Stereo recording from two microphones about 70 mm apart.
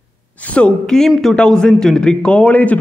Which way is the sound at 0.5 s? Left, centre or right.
Centre.